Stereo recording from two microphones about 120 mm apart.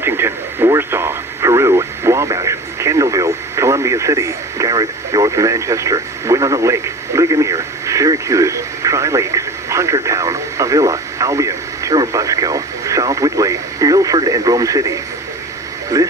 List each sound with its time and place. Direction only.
0.0 s radio: 20° right (ahead or behind)
15.9 s music: 25° right (ahead or behind)